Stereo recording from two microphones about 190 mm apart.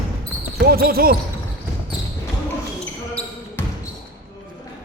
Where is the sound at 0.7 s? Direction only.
55° right (ahead or behind).